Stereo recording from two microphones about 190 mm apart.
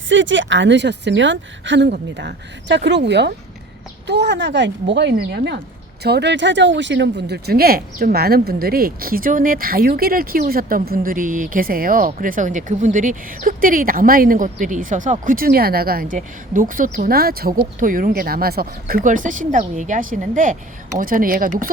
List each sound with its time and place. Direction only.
0.1 s a woman's voice: 75° right (ahead or behind); by 21.7 s 50° right (ahead or behind)